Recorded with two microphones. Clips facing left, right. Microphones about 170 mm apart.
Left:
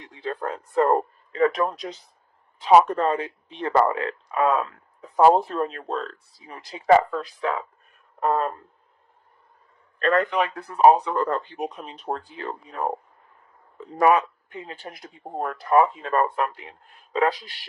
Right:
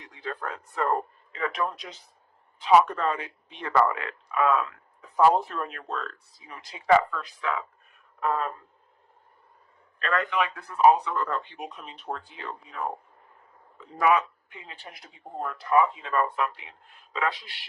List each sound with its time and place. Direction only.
0.1 s speech: 30° left (ahead or behind)
10.0 s speech: 40° left (ahead or behind)
14.0 s speech: 40° left (ahead or behind)